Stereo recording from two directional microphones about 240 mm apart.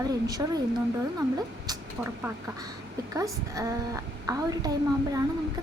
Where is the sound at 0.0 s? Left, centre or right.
Centre.